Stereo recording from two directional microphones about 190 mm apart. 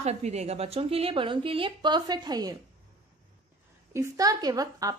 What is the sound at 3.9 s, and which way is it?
A woman's voice, 15° right (ahead or behind).